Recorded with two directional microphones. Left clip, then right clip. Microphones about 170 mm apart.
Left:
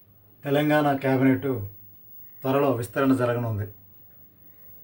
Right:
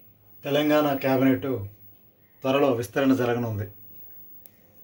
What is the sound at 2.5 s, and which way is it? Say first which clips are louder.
Speech: right 1 dB; 55° right (ahead or behind).